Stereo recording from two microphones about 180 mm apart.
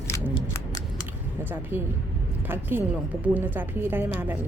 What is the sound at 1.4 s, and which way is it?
Speech, 10° right (ahead or behind).